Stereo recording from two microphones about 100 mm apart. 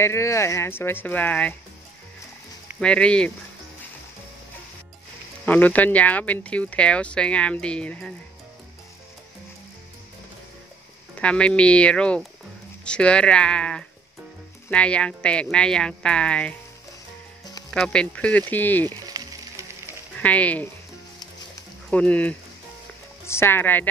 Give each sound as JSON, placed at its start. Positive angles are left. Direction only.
{"t": 0.0, "sound": "speech", "side_deg": 25}
{"t": 2.8, "sound": "speech", "side_deg": 10}
{"t": 5.4, "sound": "speech", "side_deg": 15}
{"t": 11.1, "sound": "speech", "side_deg": 10}
{"t": 17.6, "sound": "speech", "side_deg": 5}
{"t": 20.2, "sound": "speech", "side_deg": 15}
{"t": 21.9, "sound": "speech", "side_deg": 15}
{"t": 23.2, "sound": "speech", "side_deg": 25}